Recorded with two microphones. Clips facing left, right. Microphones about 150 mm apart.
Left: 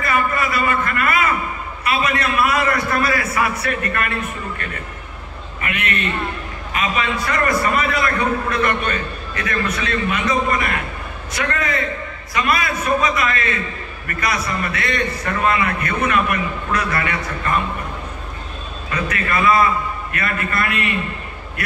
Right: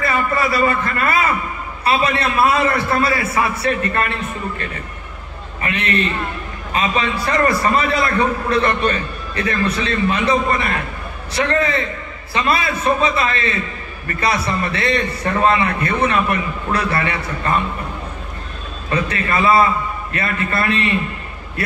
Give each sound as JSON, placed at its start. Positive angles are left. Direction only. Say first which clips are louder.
{"t": 0.0, "sound": "a man's voice", "louder": "right 1 dB", "side_deg": -30}
{"t": 5.6, "sound": "a man's voice", "louder": "right 4 dB", "side_deg": -30}
{"t": 18.9, "sound": "a man's voice", "louder": "right 3 dB", "side_deg": -30}